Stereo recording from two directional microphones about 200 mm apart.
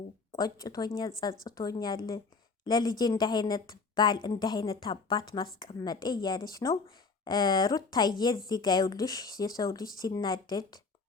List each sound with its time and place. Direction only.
0.3 s a woman's voice: 20° left (ahead or behind)